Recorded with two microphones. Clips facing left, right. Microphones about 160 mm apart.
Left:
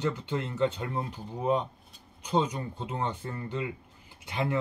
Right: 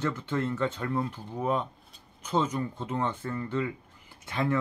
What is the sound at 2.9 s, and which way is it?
Speech, 15° left (ahead or behind).